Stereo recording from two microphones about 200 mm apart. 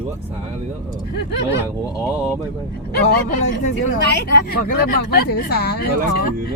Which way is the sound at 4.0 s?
55° left (ahead or behind).